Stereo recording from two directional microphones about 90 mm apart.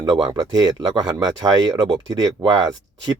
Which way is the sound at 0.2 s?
55° right (ahead or behind).